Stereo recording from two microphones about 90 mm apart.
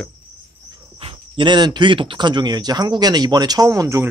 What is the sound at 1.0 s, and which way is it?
A man's voice, 60° right (ahead or behind).